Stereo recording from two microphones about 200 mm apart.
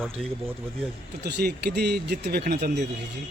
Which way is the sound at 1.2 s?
55° right (ahead or behind).